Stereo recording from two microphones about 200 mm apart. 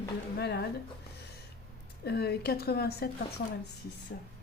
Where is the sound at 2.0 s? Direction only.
55° left (ahead or behind).